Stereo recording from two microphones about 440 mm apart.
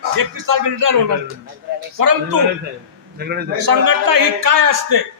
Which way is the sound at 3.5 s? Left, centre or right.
Right.